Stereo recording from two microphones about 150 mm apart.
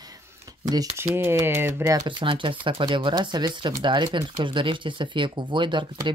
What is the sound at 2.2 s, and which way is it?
Speech, 35° right (ahead or behind).